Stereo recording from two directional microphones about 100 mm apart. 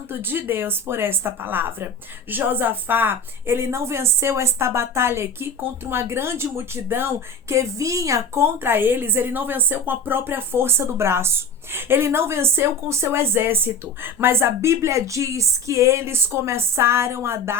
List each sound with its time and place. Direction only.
0.1 s a woman's voice: 20° right (ahead or behind)